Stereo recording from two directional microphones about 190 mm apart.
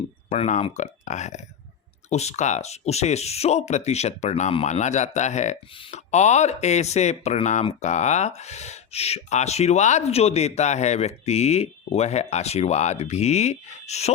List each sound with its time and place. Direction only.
0.3 s speech: 35° left (ahead or behind)